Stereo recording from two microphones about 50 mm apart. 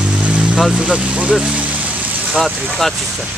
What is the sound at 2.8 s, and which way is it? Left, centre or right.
Speech, centre.